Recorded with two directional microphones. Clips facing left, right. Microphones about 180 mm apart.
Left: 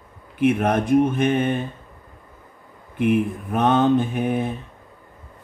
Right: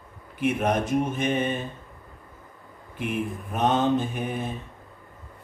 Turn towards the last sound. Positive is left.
turn(degrees=60)  # may be behind; listen again after turning